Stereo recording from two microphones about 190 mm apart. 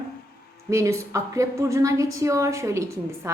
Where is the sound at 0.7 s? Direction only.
15° right (ahead or behind).